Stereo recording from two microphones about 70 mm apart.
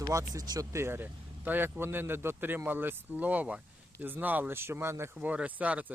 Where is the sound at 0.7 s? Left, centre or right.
Right.